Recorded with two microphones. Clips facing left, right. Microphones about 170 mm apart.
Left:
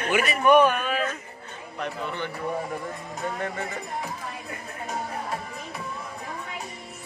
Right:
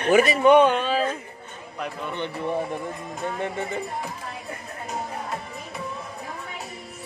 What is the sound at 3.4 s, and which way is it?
Music, 20° right (ahead or behind).